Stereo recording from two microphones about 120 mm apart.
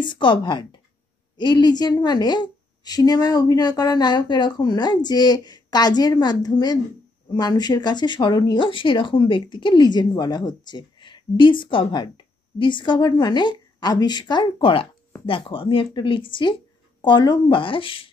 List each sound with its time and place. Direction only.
0.0 s a woman's voice: 40° left (ahead or behind)